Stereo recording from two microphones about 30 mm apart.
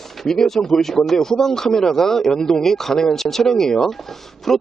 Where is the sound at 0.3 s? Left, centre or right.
Centre.